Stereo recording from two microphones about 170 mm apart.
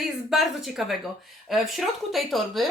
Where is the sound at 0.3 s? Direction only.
Centre (ahead or behind).